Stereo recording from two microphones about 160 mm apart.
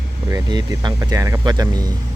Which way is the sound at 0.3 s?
20° right (ahead or behind).